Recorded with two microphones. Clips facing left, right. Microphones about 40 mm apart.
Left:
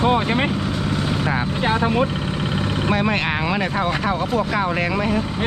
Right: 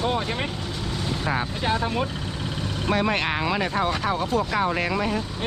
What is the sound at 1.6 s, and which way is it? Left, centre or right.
Speech, left.